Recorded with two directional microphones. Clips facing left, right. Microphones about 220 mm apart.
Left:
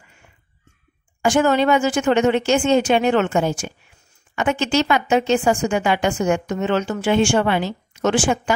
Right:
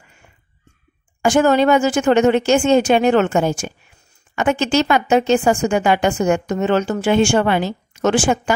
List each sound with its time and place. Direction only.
1.2 s speech: 45° right (ahead or behind)